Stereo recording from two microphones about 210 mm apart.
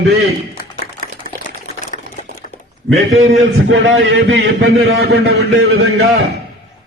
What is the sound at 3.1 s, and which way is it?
A man's voice, 60° right (ahead or behind).